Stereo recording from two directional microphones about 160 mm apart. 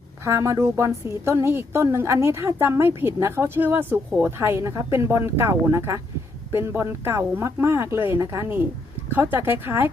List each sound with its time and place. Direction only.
0.3 s a woman's voice: 20° right (ahead or behind)